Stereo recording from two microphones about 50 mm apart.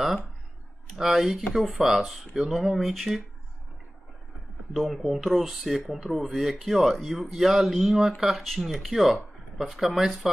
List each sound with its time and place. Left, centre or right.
0.9 s speech: centre
4.7 s speech: centre